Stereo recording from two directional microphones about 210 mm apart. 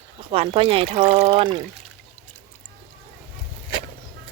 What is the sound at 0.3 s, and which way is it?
Speech, 25° right (ahead or behind).